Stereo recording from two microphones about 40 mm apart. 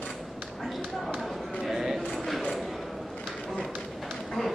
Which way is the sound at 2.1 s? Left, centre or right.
Centre.